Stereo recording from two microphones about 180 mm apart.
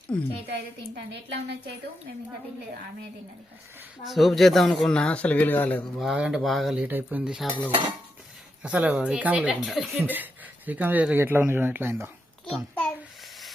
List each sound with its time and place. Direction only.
0.1 s speech: 5° left (ahead or behind)
0.9 s a woman's voice: 70° right (ahead or behind)
4.0 s speech: centre (ahead or behind)
6.0 s speech: 5° right (ahead or behind)
8.6 s speech: 5° right (ahead or behind)
12.5 s a sound: 5° left (ahead or behind)